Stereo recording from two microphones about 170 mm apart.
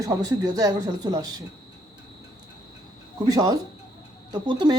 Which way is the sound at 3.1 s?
25° right (ahead or behind).